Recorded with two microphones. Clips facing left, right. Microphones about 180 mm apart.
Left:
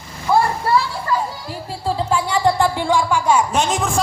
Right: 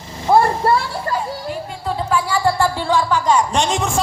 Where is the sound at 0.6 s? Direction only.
50° right (ahead or behind).